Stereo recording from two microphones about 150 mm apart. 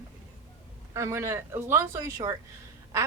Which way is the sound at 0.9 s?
20° right (ahead or behind).